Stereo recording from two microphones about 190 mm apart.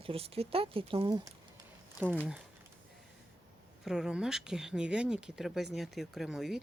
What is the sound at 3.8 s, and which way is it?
Speech, 5° right (ahead or behind).